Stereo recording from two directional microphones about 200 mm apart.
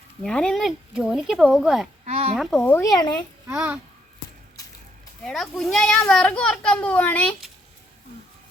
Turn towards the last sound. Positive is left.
turn(degrees=0)  # may be behind; listen again after turning